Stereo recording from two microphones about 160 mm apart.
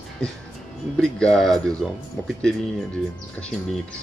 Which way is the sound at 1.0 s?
5° left (ahead or behind).